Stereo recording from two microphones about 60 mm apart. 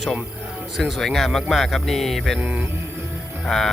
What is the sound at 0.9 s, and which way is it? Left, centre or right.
Speech, centre.